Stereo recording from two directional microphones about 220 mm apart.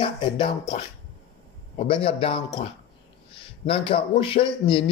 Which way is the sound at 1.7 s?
25° left (ahead or behind).